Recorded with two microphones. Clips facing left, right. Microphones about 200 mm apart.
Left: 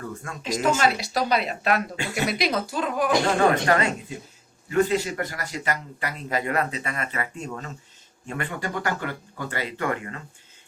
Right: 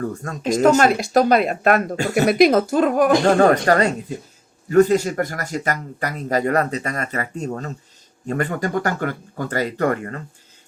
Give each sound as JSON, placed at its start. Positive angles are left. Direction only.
{"t": 0.0, "sound": "speech", "side_deg": -40}